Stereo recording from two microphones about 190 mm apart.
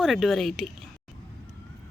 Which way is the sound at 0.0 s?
Centre (ahead or behind).